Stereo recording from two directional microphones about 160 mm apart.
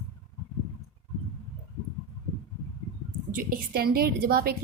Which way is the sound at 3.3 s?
60° right (ahead or behind).